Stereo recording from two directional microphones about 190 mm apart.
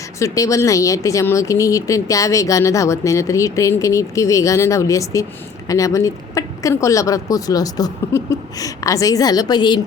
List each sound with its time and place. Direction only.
0.2 s speech: 15° left (ahead or behind)